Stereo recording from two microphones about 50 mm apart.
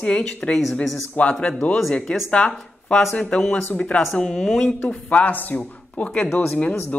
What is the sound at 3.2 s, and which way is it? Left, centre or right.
A man's voice, centre.